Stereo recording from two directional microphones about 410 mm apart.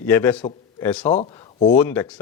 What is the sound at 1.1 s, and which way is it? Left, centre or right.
Speech, centre.